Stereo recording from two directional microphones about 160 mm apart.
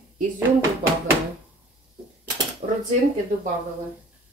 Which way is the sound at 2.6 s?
45° right (ahead or behind).